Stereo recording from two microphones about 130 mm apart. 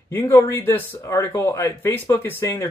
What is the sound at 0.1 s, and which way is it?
Speech, 20° left (ahead or behind).